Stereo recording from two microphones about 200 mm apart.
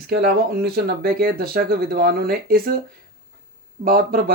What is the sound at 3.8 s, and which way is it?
Speech, 45° right (ahead or behind).